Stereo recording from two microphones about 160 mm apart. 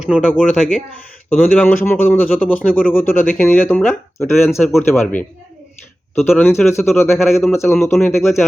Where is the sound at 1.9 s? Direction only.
10° left (ahead or behind).